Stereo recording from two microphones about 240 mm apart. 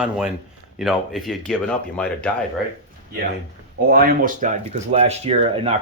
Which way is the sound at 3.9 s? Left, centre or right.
Right.